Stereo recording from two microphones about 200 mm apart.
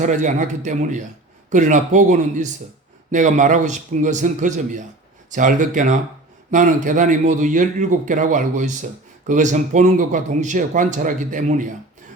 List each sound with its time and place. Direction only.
0.0 s a man's voice: 40° right (ahead or behind)